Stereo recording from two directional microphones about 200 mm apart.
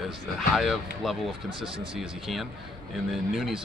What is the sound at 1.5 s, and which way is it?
Speech, 25° right (ahead or behind).